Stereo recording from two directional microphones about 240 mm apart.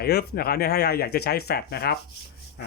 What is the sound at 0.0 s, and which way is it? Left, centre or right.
Speech, left.